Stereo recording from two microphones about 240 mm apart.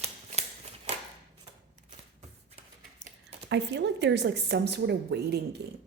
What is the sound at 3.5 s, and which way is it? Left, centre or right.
A woman's voice, right.